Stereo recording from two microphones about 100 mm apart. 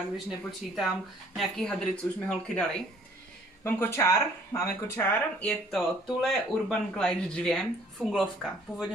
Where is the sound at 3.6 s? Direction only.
25° left (ahead or behind).